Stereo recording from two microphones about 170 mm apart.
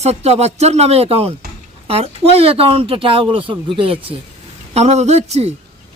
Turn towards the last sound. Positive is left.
turn(degrees=-40)  # may be behind; listen again after turning